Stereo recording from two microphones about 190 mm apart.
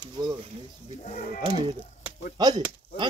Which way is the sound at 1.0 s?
45° left (ahead or behind).